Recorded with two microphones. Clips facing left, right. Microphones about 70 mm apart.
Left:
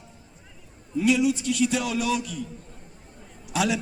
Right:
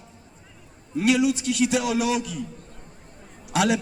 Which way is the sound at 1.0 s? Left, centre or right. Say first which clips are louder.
Right 1 dB; right.